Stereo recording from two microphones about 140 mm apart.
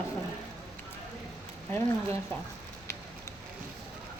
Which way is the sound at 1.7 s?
20° left (ahead or behind).